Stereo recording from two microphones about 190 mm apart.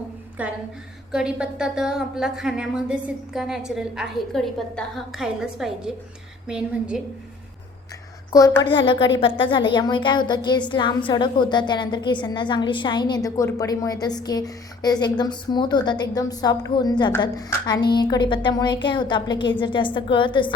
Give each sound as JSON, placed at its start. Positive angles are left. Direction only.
{"t": 0.4, "sound": "a woman's voice", "side_deg": -5}
{"t": 8.3, "sound": "a woman's voice", "side_deg": 15}